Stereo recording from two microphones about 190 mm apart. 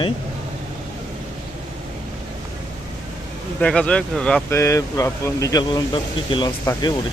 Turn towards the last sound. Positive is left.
turn(degrees=20)  # may be behind; listen again after turning